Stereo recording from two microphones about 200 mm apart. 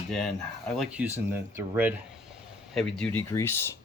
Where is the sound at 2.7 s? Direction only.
5° left (ahead or behind).